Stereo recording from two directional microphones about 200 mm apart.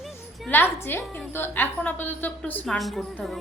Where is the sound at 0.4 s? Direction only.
10° left (ahead or behind).